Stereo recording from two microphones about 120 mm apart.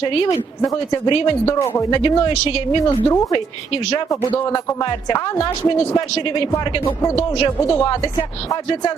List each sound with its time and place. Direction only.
0.0 s speech: 50° left (ahead or behind)
2.8 s a woman's voice: 25° left (ahead or behind)
4.8 s a woman's voice: 35° left (ahead or behind)
7.2 s speech: 45° left (ahead or behind)